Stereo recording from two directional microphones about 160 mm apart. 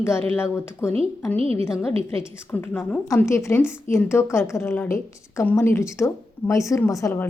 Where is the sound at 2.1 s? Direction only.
15° left (ahead or behind).